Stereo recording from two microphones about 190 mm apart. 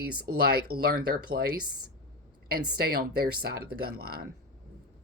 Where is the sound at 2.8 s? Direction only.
55° right (ahead or behind).